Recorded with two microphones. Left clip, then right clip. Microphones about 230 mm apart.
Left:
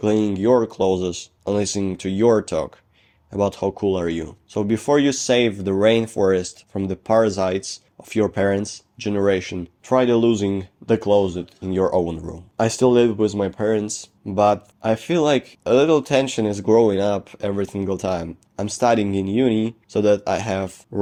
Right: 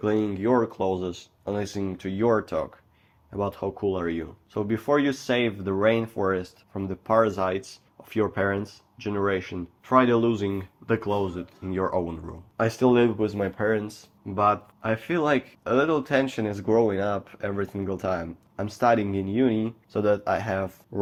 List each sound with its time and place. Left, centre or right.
0.0 s speech: left